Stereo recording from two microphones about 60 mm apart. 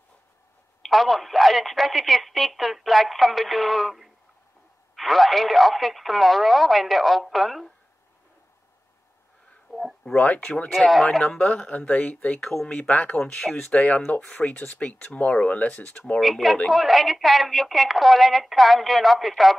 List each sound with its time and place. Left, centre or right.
0.8 s speech: centre
9.7 s a sound: centre
10.1 s speech: left
10.7 s speech: centre
11.2 s speech: centre
12.4 s speech: centre
12.7 s speech: left
16.2 s speech: centre